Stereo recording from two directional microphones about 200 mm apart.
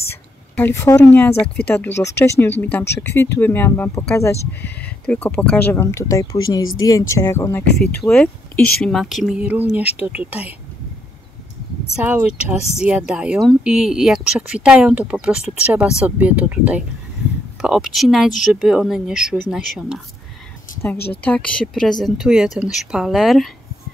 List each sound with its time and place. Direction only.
0.1 s speech: 10° left (ahead or behind)
7.6 s speech: 50° left (ahead or behind)
8.0 s speech: 5° left (ahead or behind)
12.0 s speech: 10° right (ahead or behind)
20.7 s a sound: 10° left (ahead or behind)
21.2 s speech: 5° left (ahead or behind)